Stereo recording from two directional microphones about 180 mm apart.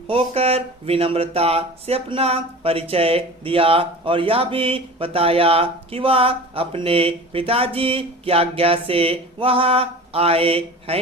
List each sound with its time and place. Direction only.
0.1 s speech: 35° right (ahead or behind)